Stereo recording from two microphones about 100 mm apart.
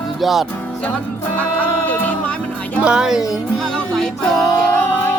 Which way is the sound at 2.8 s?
5° right (ahead or behind).